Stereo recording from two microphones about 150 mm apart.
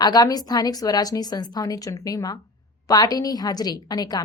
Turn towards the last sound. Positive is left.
turn(degrees=25)  # may be behind; listen again after turning